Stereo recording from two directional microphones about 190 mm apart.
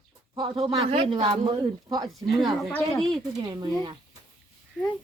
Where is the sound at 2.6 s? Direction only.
Centre (ahead or behind).